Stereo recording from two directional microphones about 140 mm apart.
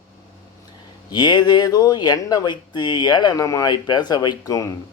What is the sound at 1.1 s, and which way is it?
A man's voice, 30° left (ahead or behind).